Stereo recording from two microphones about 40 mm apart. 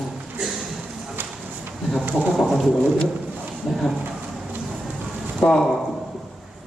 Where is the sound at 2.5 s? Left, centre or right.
Centre.